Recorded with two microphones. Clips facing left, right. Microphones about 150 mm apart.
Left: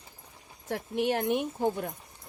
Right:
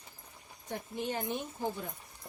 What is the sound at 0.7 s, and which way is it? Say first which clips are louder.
Speech: left 8 dB; 80° left.